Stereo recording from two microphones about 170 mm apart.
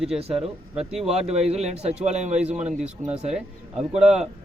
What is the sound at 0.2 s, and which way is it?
Speech, 35° right (ahead or behind).